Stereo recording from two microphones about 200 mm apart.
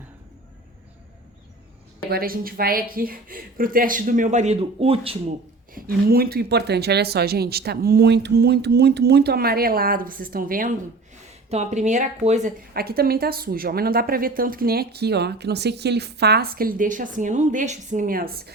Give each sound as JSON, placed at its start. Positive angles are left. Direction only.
{"t": 2.0, "sound": "a woman's voice", "side_deg": -50}
{"t": 5.7, "sound": "a woman's voice", "side_deg": -50}
{"t": 11.5, "sound": "a woman's voice", "side_deg": -35}